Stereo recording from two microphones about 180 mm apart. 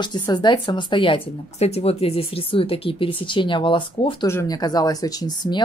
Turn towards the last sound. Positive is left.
turn(degrees=20)  # may be behind; listen again after turning